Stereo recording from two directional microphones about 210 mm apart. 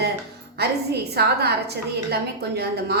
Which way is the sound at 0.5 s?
50° right (ahead or behind).